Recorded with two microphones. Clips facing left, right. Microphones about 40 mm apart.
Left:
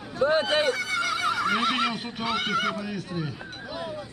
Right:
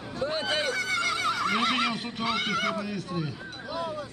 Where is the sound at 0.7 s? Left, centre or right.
Centre.